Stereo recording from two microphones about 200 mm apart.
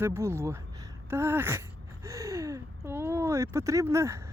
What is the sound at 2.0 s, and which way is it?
Gasp, 15° right (ahead or behind).